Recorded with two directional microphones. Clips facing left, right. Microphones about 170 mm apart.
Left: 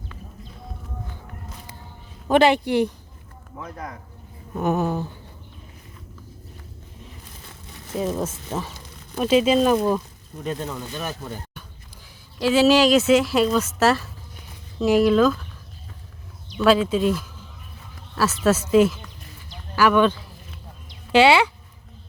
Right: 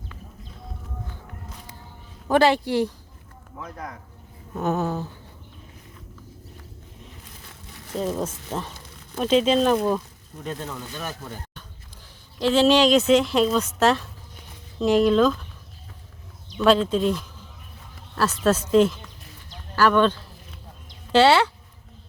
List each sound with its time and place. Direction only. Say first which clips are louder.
2.2 s speech: left 2 dB; 15° left (ahead or behind)
3.5 s speech: left 1 dB; 5° left (ahead or behind)
7.9 s speech: left 1 dB; 5° left (ahead or behind)
12.4 s speech: left 1 dB; 5° left (ahead or behind)
16.6 s speech: left 1 dB; 5° left (ahead or behind)